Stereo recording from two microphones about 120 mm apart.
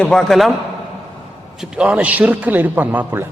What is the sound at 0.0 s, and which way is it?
Speech, 5° left (ahead or behind).